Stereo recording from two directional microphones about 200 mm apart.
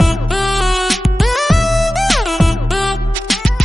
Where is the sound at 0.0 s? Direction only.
Centre (ahead or behind).